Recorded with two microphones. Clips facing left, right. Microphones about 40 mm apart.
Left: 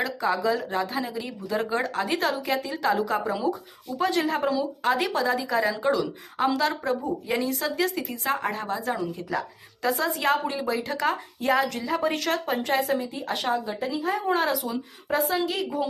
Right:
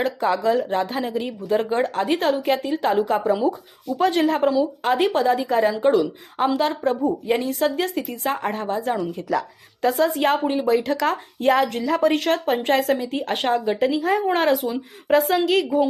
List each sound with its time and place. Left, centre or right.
0.0 s speech: right
3.4 s speech: right
4.1 s speech: right
7.0 s speech: right
9.0 s speech: right
11.9 s speech: right
12.1 s speech: right
14.3 s speech: right